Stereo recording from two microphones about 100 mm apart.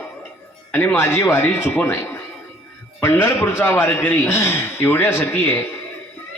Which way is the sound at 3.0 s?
25° left (ahead or behind).